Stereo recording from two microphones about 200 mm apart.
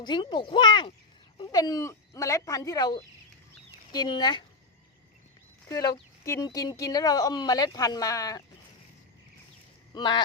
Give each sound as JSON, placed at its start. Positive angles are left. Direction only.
{"t": 0.0, "sound": "a child's voice", "side_deg": 20}
{"t": 5.6, "sound": "speech", "side_deg": 15}
{"t": 9.9, "sound": "a child's voice", "side_deg": 20}